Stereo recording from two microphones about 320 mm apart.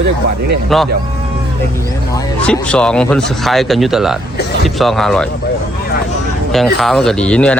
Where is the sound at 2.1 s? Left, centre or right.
Centre.